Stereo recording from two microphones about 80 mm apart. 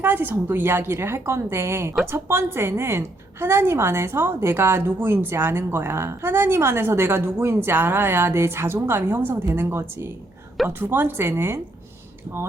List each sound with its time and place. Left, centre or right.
0.0 s a woman's voice: right